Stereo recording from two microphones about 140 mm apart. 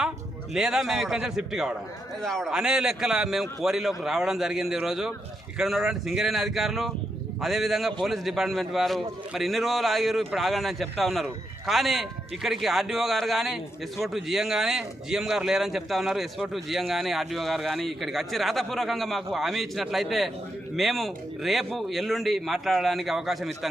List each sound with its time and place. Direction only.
0.5 s speech: 5° right (ahead or behind)